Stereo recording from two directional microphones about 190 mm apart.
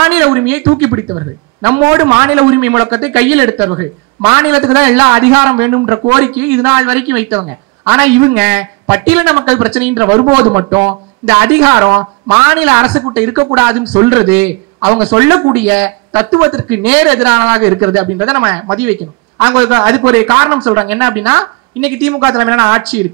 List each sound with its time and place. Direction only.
0.0 s a man's voice: 10° right (ahead or behind)
14.9 s a man's voice: 20° right (ahead or behind)